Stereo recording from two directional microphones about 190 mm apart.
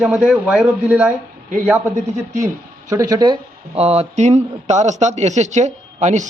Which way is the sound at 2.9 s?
20° right (ahead or behind).